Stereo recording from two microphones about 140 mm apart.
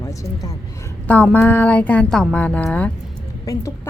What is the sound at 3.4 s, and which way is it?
Speech, 25° left (ahead or behind).